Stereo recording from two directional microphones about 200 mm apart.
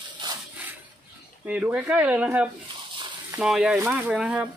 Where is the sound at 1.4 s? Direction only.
5° right (ahead or behind).